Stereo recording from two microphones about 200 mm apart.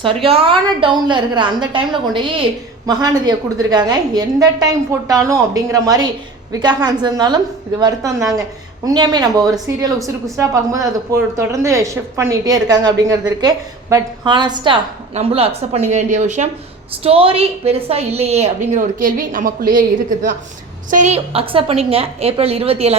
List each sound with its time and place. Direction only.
0.0 s a woman's voice: 25° right (ahead or behind)